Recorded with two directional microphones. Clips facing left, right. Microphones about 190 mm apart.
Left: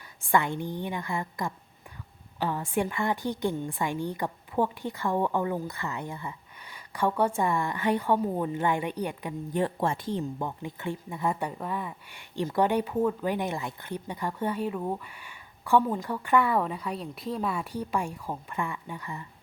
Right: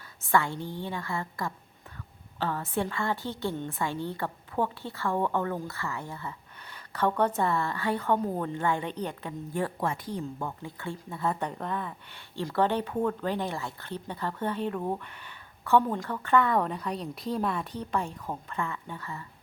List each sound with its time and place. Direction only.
0.3 s a woman's voice: 15° left (ahead or behind)